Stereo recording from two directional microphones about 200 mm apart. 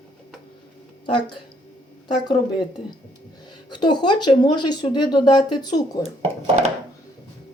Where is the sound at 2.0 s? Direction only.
20° left (ahead or behind).